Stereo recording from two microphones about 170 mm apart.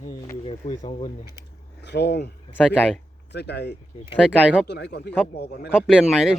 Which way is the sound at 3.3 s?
80° left.